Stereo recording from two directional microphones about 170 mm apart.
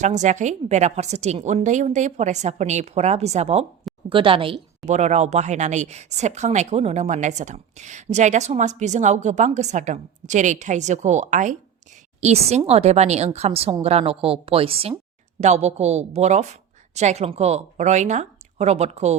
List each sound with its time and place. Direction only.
0.0 s a woman's voice: 45° right (ahead or behind)
4.9 s a woman's voice: 40° right (ahead or behind)